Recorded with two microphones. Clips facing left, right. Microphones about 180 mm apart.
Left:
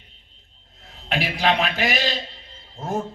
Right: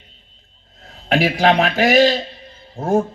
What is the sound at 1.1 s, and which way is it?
A man's voice, 45° right (ahead or behind).